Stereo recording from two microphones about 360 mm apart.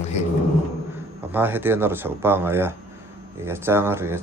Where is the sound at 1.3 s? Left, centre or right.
Centre.